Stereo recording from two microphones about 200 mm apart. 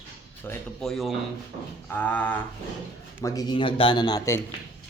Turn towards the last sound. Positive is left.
turn(degrees=20)  # may be behind; listen again after turning